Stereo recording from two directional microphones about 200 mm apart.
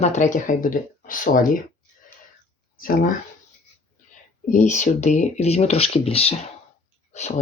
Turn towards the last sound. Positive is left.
turn(degrees=35)  # may be behind; listen again after turning